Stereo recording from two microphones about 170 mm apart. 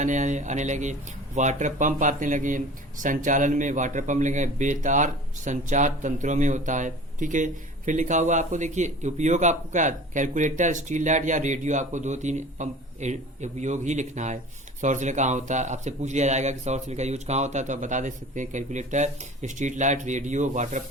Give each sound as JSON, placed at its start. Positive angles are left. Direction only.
{"t": 0.0, "sound": "speech", "side_deg": -45}